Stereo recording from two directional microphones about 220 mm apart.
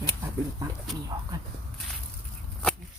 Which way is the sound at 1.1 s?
20° right (ahead or behind).